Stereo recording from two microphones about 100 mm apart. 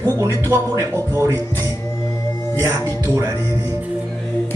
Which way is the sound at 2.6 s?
30° right (ahead or behind).